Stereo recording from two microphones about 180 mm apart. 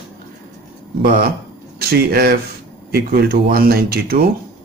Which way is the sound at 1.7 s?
60° right (ahead or behind).